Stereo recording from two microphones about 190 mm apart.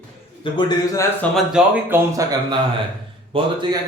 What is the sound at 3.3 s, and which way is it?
Speech, 30° right (ahead or behind).